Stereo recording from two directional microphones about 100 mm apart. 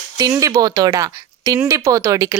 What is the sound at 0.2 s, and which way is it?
Speech, 35° right (ahead or behind).